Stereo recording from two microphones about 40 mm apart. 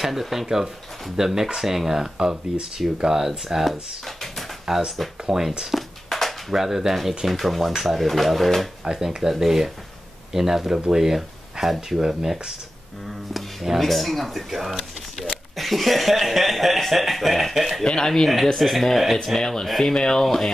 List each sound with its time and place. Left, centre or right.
0.0 s speech: centre
6.0 s a sound: centre
6.5 s speech: centre
8.8 s speech: centre
17.8 s speech: centre
18.6 s speech: centre
19.4 s speech: centre